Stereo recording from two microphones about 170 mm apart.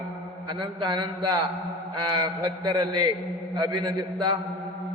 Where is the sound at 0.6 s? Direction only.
25° right (ahead or behind).